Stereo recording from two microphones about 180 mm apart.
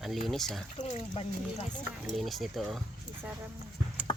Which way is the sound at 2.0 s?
Centre (ahead or behind).